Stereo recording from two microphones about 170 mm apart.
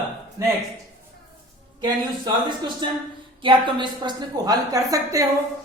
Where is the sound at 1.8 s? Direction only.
25° right (ahead or behind).